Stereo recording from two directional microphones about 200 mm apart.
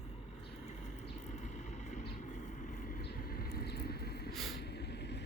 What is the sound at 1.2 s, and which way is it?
Vehicle, 35° left (ahead or behind).